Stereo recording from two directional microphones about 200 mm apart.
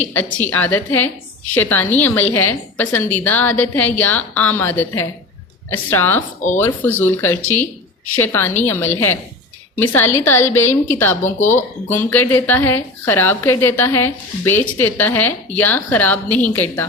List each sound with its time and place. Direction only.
0.0 s a woman's voice: 10° left (ahead or behind)
11.2 s speech: 40° left (ahead or behind)
11.9 s a woman's voice: 10° left (ahead or behind)